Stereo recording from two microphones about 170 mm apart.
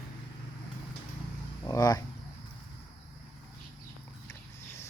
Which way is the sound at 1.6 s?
20° left (ahead or behind).